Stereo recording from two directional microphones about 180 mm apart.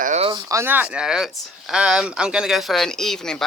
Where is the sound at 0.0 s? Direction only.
35° right (ahead or behind).